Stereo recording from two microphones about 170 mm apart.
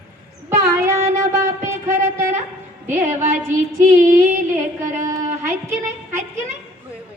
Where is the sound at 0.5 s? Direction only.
15° right (ahead or behind).